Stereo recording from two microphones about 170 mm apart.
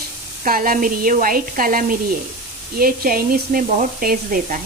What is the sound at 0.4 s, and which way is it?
Speech, 55° right (ahead or behind).